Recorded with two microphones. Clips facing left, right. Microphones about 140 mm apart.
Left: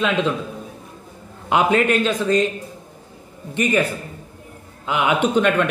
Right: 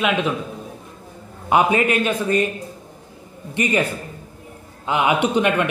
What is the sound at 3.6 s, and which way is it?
Speech, 10° right (ahead or behind).